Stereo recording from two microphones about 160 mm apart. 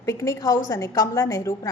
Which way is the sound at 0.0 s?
20° left (ahead or behind).